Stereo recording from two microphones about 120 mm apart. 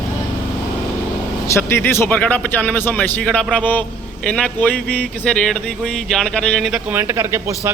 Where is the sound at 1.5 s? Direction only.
20° left (ahead or behind).